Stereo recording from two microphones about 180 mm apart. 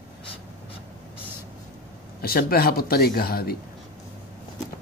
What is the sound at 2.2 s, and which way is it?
Speech, 55° left (ahead or behind).